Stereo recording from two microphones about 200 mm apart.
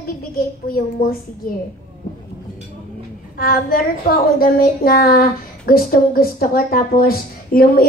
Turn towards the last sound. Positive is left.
turn(degrees=45)  # may be behind; listen again after turning